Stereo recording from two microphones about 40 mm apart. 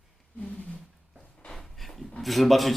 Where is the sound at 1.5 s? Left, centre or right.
Centre.